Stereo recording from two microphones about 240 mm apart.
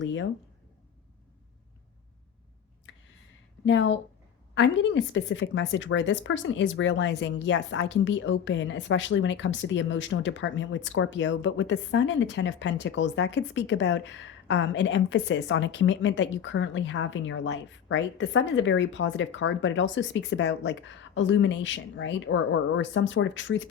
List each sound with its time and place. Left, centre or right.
0.0 s a woman's voice: left
3.7 s a woman's voice: left